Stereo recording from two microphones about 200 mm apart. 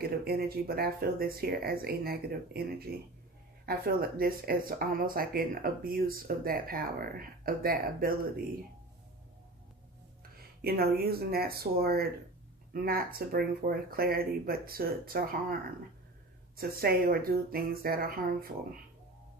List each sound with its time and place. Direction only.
0.0 s speech: 50° right (ahead or behind)
10.3 s speech: 50° right (ahead or behind)
16.5 s speech: 50° right (ahead or behind)